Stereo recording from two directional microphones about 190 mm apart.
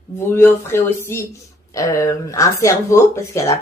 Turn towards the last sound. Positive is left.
turn(degrees=15)  # may be behind; listen again after turning